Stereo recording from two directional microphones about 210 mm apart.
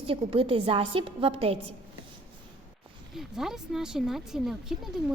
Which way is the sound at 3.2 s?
Centre (ahead or behind).